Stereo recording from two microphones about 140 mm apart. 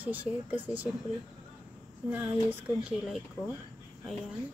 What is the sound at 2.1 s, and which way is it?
A woman's voice, 10° right (ahead or behind).